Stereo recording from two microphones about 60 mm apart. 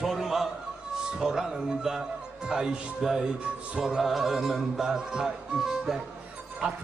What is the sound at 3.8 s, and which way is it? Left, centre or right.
Music, centre.